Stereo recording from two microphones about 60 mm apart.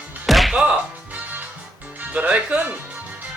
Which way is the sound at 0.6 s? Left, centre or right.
Right.